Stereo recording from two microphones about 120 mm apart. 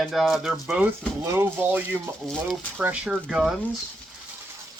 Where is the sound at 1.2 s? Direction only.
20° right (ahead or behind).